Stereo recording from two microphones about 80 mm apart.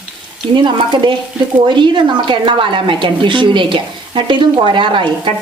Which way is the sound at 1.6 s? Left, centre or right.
Right.